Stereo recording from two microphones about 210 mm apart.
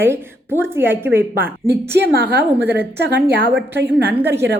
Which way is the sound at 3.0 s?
50° right (ahead or behind).